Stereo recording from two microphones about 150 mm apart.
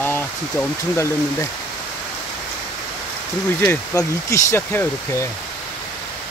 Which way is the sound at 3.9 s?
20° left (ahead or behind).